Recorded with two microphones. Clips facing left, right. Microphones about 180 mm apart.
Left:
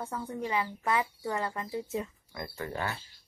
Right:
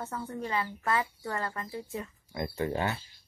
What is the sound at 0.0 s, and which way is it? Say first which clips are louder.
A woman's voice: left 1 dB; 10° left (ahead or behind).